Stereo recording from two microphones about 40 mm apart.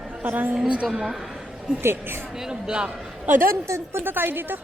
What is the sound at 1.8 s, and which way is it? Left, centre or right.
Speech, right.